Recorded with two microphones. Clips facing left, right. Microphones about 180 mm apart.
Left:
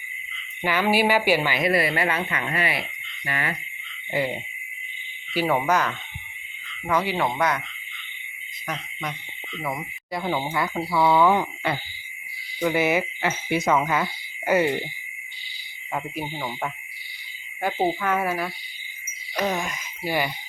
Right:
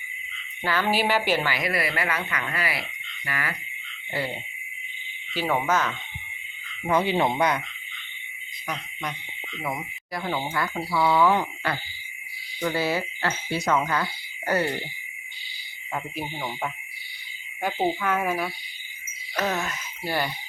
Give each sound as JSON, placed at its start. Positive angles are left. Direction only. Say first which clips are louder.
{"t": 0.6, "sound": "speech", "louder": "left 3 dB", "side_deg": 15}
{"t": 1.5, "sound": "speech", "louder": "left 5 dB", "side_deg": 25}
{"t": 6.8, "sound": "speech", "louder": "right 1 dB", "side_deg": -25}
{"t": 8.6, "sound": "speech", "louder": "left 1 dB", "side_deg": 10}
{"t": 10.2, "sound": "speech", "louder": "left 2 dB", "side_deg": 20}
{"t": 11.7, "sound": "speech", "louder": "left 2 dB", "side_deg": 25}
{"t": 13.7, "sound": "speech", "louder": "left 1 dB", "side_deg": 5}
{"t": 13.9, "sound": "speech", "louder": "left 2 dB", "side_deg": 20}
{"t": 16.2, "sound": "speech", "louder": "left 1 dB", "side_deg": 0}
{"t": 17.6, "sound": "speech", "louder": "left 2 dB", "side_deg": 10}